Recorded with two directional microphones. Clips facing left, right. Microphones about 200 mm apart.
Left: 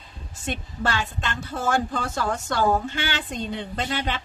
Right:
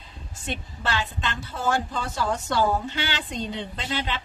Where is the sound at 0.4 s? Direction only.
50° left (ahead or behind).